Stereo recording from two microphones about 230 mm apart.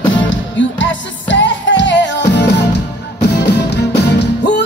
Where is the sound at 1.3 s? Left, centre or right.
Left.